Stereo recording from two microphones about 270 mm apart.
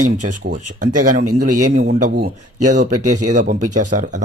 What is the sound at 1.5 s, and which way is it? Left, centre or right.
Speech, right.